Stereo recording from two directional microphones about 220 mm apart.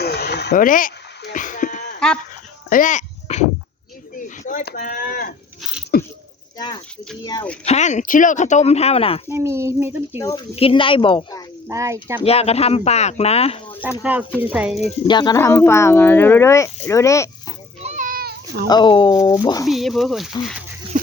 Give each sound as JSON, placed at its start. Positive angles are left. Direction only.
{"t": 0.0, "sound": "a sound", "side_deg": 45}
{"t": 4.4, "sound": "speech", "side_deg": 35}
{"t": 5.9, "sound": "a sound", "side_deg": 45}
{"t": 7.6, "sound": "speech", "side_deg": 30}
{"t": 9.3, "sound": "speech", "side_deg": -10}
{"t": 10.2, "sound": "speech", "side_deg": 15}
{"t": 11.7, "sound": "speech", "side_deg": -15}
{"t": 12.2, "sound": "speech", "side_deg": 25}
{"t": 14.0, "sound": "speech", "side_deg": -5}
{"t": 14.8, "sound": "speech", "side_deg": 25}
{"t": 17.8, "sound": "cat", "side_deg": -35}
{"t": 18.7, "sound": "speech", "side_deg": 20}
{"t": 19.6, "sound": "speech", "side_deg": 0}
{"t": 20.9, "sound": "dog", "side_deg": -35}